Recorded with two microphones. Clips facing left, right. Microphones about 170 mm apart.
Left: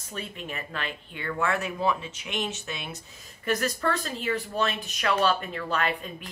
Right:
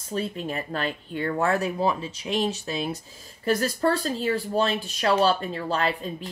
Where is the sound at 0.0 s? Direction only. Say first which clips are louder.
Right 8 dB; 35° right (ahead or behind).